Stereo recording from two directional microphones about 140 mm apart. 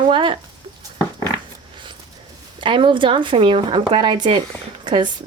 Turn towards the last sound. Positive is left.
turn(degrees=-35)  # may be behind; listen again after turning